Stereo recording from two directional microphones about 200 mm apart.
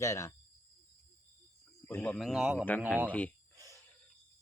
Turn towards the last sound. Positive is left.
turn(degrees=5)  # may be behind; listen again after turning